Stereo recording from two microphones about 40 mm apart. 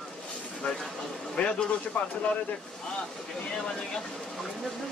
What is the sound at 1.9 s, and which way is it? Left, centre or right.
Speech, left.